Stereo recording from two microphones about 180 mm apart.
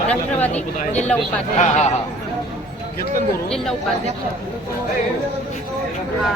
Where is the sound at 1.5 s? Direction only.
40° left (ahead or behind).